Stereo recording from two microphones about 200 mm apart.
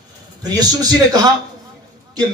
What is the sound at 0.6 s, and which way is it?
Speech, 20° right (ahead or behind).